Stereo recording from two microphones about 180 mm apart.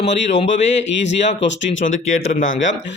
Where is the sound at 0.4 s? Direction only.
90° left.